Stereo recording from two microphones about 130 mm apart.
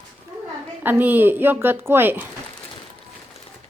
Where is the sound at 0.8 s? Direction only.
15° right (ahead or behind).